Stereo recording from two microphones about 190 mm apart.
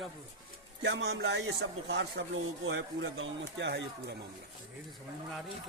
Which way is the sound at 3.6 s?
65° right (ahead or behind).